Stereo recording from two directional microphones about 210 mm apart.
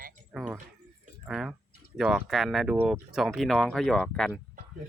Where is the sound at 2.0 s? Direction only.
Centre (ahead or behind).